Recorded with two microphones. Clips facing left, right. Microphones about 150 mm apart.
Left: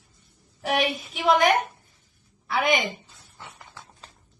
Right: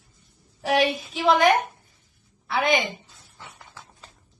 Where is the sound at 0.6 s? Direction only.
30° right (ahead or behind).